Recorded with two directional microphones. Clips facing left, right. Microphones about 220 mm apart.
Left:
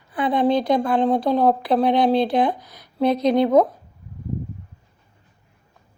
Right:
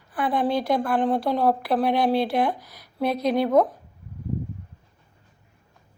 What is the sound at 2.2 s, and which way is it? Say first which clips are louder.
Speech: left 3 dB; 20° left (ahead or behind).